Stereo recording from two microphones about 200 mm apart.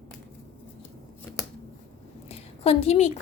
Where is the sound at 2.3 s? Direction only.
30° left (ahead or behind).